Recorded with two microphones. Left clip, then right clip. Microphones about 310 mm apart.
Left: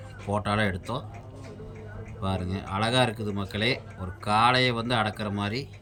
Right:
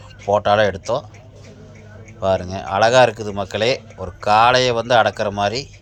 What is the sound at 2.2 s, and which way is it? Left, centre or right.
Speech, centre.